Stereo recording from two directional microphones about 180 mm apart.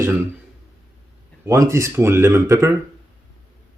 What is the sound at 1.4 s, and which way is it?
Speech, 15° right (ahead or behind).